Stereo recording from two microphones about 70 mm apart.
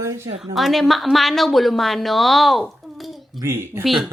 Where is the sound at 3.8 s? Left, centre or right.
Centre.